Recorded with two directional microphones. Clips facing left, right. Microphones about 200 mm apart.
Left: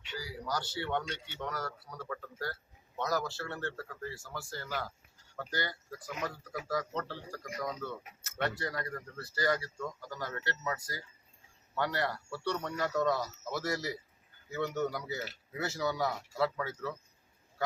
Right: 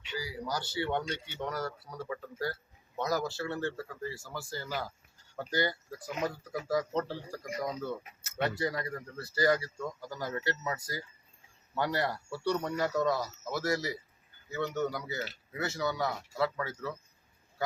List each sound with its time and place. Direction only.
0.2 s speech: 10° right (ahead or behind)